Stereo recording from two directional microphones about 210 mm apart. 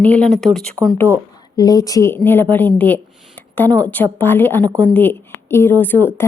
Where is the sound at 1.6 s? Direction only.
15° left (ahead or behind).